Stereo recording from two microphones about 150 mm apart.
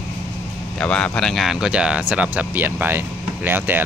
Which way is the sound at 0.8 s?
5° left (ahead or behind).